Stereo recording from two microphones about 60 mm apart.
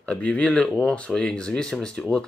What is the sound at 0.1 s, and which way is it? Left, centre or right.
Speech, centre.